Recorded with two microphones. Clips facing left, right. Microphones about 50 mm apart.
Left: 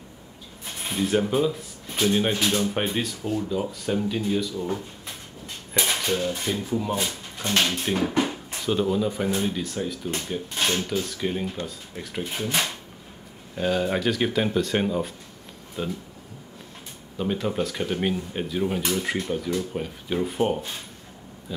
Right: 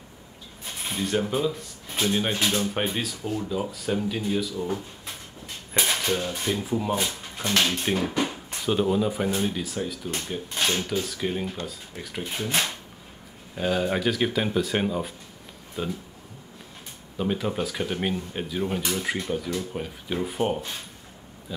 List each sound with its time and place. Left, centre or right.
0.8 s speech: centre
5.8 s mechanisms: centre
6.4 s speech: centre
7.9 s speech: centre
17.2 s speech: centre